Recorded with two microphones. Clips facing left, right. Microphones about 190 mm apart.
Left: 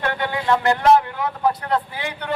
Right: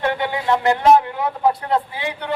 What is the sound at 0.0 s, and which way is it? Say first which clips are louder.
Speech: right 2 dB; 20° right (ahead or behind).